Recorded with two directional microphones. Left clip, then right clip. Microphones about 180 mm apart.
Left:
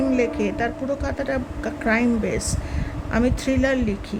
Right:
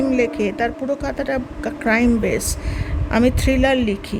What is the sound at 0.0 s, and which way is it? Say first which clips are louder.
Speech: right 3 dB; 25° right (ahead or behind).